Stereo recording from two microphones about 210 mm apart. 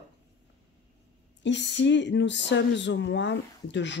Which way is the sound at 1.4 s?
60° left (ahead or behind).